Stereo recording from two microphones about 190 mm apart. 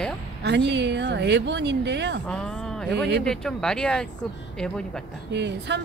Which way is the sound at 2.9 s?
65° right (ahead or behind).